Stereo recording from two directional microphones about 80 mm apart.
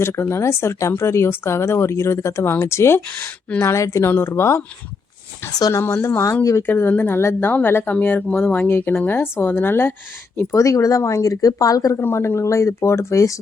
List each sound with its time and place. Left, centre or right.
0.0 s speech: left
5.5 s speech: left
5.8 s speech: left
10.5 s speech: left
11.9 s speech: left